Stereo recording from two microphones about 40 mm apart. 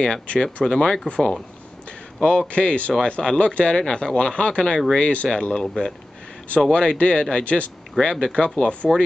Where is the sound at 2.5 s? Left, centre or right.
Left.